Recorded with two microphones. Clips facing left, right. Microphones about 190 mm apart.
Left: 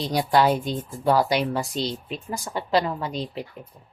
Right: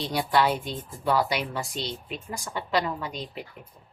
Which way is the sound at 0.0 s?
40° left (ahead or behind).